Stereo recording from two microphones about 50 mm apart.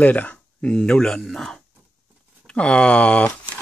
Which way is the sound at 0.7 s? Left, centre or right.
Centre.